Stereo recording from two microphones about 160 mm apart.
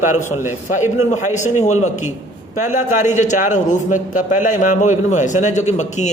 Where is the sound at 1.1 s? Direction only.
50° left (ahead or behind).